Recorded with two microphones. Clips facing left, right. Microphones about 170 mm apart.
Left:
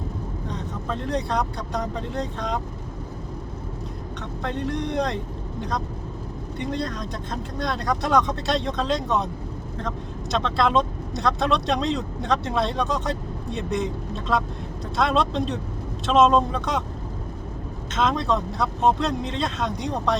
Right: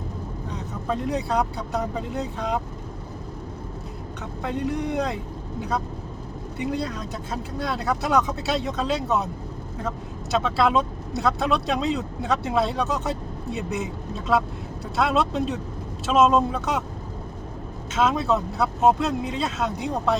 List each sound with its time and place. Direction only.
0.4 s speech: 10° right (ahead or behind)
4.4 s speech: 5° right (ahead or behind)
10.3 s speech: 5° right (ahead or behind)
17.9 s speech: 5° right (ahead or behind)